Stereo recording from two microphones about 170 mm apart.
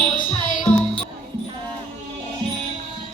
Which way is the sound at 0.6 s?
30° left (ahead or behind).